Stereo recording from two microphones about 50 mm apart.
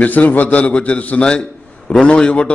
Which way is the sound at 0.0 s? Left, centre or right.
Left.